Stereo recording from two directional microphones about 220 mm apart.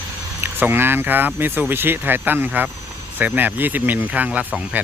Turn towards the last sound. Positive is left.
turn(degrees=-5)  # may be behind; listen again after turning